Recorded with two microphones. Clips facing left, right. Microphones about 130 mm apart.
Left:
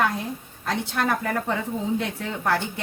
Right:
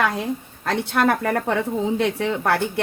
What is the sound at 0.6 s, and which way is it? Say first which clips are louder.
Speech: right 5 dB; 65° right (ahead or behind).